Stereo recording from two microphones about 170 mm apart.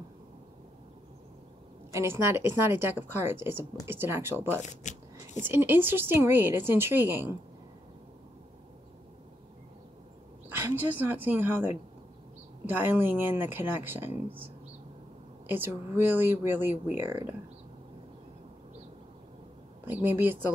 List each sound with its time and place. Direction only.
1.9 s a woman's voice: 15° right (ahead or behind)
4.6 s a sound: 45° left (ahead or behind)
5.4 s a woman's voice: 15° right (ahead or behind)
10.5 s a woman's voice: 15° right (ahead or behind)
15.4 s a woman's voice: 10° right (ahead or behind)
19.8 s a woman's voice: 10° right (ahead or behind)